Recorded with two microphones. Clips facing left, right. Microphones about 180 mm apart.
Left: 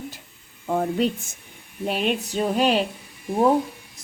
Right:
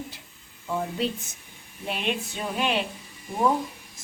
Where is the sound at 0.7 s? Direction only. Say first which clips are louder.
Left 6 dB; 55° left (ahead or behind).